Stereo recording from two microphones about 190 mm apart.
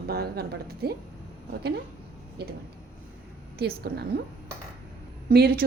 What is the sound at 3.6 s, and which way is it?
Speech, 60° right (ahead or behind).